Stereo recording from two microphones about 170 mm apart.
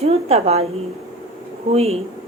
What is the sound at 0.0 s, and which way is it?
Speech, 35° right (ahead or behind).